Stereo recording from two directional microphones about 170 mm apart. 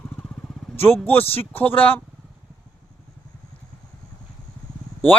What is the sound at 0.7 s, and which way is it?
A man's voice, 15° left (ahead or behind).